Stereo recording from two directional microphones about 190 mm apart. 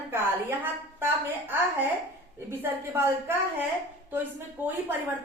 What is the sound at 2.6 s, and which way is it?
A woman's voice, 10° right (ahead or behind).